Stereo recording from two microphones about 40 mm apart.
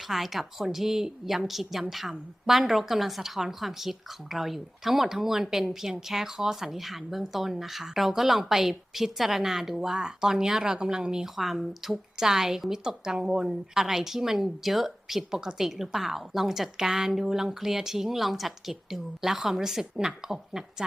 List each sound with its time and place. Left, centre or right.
0.1 s a woman's voice: centre
11.3 s a woman's voice: centre